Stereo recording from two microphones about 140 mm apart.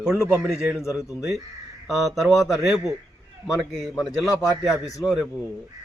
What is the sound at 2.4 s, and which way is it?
Speech, centre (ahead or behind).